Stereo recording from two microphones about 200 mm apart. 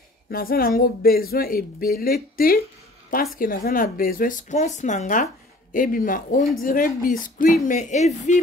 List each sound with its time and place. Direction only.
0.3 s speech: 50° left (ahead or behind)